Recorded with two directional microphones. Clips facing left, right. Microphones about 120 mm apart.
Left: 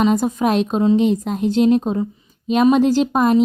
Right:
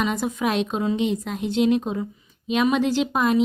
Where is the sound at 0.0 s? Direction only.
40° left (ahead or behind).